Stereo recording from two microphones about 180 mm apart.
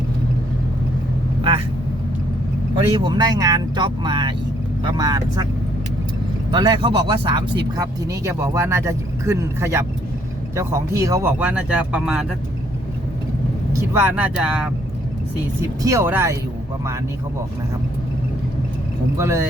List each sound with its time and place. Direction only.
3.0 s speech: 25° right (ahead or behind)
6.5 s speech: 25° right (ahead or behind); by 12.2 s 5° right (ahead or behind)
13.9 s speech: 10° right (ahead or behind)
15.6 s speech: 15° right (ahead or behind)
19.1 s speech: 15° right (ahead or behind)